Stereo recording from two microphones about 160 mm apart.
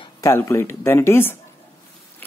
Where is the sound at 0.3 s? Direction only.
15° left (ahead or behind).